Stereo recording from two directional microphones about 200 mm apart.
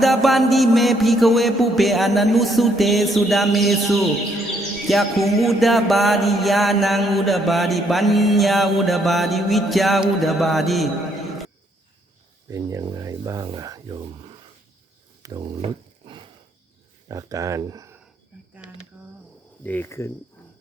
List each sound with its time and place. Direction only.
0.0 s mantra: centre (ahead or behind)
12.5 s speech: 15° right (ahead or behind)
15.2 s a sound: 20° right (ahead or behind)
17.1 s speech: 15° right (ahead or behind)
18.5 s a sound: 5° right (ahead or behind)
19.6 s speech: 10° left (ahead or behind)